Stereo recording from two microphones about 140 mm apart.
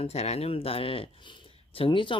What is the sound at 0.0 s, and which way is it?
Speech, 50° left (ahead or behind).